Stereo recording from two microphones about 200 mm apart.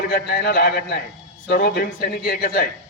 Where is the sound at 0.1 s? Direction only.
50° left (ahead or behind).